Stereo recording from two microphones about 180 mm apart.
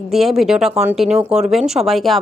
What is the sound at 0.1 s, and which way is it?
Speech, centre (ahead or behind).